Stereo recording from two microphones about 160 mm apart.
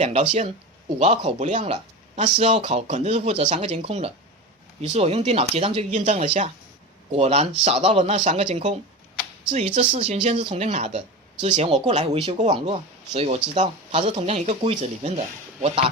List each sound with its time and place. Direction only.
0.0 s speech: 45° right (ahead or behind)